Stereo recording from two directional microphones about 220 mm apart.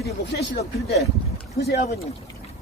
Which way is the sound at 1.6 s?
45° left (ahead or behind).